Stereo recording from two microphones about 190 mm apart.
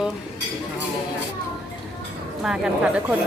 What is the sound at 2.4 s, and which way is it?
Speech, 5° right (ahead or behind).